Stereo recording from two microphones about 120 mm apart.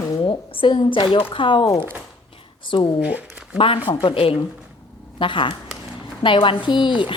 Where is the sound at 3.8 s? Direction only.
45° left (ahead or behind).